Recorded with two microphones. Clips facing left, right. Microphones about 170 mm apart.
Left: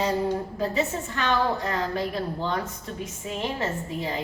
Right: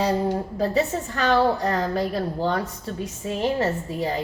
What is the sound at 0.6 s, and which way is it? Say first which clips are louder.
A woman's voice: right 5 dB; 35° right (ahead or behind).